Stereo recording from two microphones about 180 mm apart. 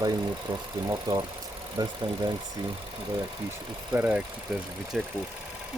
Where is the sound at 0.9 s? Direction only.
20° right (ahead or behind).